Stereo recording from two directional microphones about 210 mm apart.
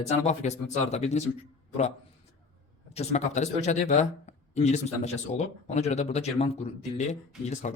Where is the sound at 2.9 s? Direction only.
30° left (ahead or behind).